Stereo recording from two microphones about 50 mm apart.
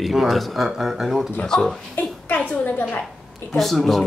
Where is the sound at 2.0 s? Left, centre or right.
Left.